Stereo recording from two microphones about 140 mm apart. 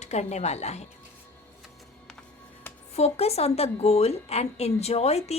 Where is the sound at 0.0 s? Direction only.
55° left (ahead or behind).